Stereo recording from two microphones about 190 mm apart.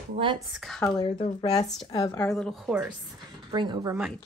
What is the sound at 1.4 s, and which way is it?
Speech, 20° left (ahead or behind).